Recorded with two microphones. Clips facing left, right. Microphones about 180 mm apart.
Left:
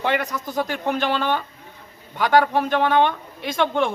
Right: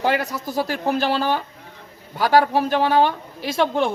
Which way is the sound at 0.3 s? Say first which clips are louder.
Right 1 dB; 5° right (ahead or behind).